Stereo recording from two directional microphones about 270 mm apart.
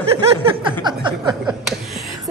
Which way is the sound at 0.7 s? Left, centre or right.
Centre.